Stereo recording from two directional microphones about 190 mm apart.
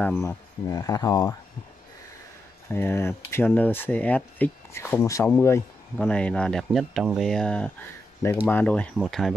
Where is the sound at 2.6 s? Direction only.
10° left (ahead or behind).